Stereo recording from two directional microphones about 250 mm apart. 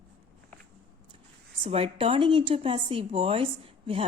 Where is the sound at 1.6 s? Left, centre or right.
Right.